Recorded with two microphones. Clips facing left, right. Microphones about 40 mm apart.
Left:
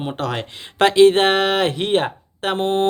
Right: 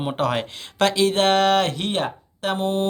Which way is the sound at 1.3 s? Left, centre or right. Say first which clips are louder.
Even; centre.